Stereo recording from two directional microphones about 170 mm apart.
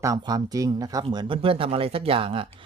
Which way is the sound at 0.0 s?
20° right (ahead or behind).